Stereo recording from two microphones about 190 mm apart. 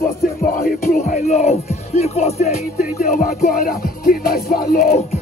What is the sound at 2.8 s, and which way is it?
Music, 50° left (ahead or behind).